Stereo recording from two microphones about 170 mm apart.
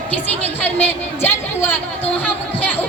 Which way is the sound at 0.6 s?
10° left (ahead or behind).